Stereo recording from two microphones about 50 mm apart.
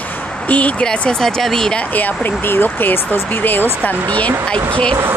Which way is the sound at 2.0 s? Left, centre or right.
Left.